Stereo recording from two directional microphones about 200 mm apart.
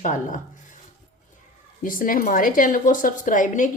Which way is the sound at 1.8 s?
45° left (ahead or behind).